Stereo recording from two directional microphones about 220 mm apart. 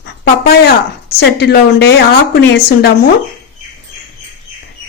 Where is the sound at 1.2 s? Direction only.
50° left (ahead or behind).